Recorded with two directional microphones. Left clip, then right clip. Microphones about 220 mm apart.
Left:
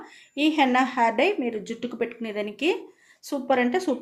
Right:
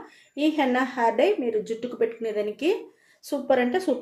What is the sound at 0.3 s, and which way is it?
Speech, 40° left (ahead or behind).